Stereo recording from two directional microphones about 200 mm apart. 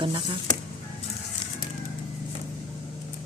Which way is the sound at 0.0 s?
25° right (ahead or behind).